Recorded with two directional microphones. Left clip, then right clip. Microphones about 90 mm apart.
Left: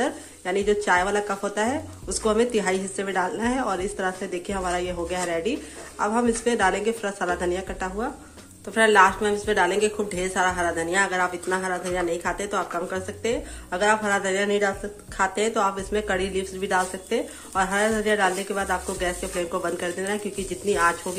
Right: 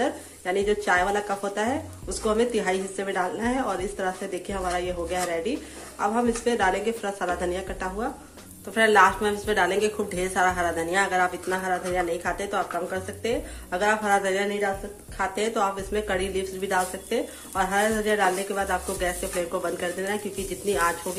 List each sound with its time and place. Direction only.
0.0 s a woman's voice: 35° left (ahead or behind)